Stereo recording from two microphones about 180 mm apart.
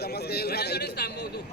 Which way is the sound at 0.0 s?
60° left (ahead or behind).